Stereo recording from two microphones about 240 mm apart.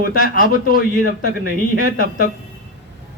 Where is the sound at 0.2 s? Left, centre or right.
Left.